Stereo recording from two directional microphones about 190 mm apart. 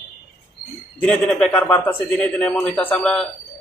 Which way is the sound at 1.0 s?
5° left (ahead or behind).